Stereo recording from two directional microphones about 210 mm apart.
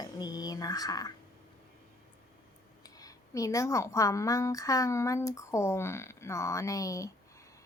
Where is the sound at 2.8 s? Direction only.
15° left (ahead or behind).